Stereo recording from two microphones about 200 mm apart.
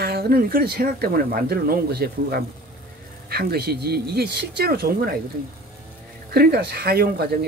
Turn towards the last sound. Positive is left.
turn(degrees=-55)  # may be behind; listen again after turning